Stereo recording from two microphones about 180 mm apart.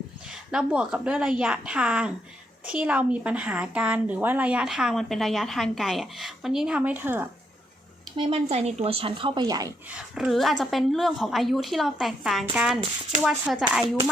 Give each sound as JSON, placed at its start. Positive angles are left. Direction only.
{"t": 0.3, "sound": "a woman's voice", "side_deg": -5}
{"t": 8.1, "sound": "speech", "side_deg": -30}
{"t": 9.9, "sound": "a woman's voice", "side_deg": 0}